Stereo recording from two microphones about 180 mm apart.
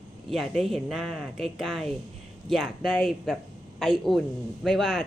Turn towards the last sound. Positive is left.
turn(degrees=0)  # may be behind; listen again after turning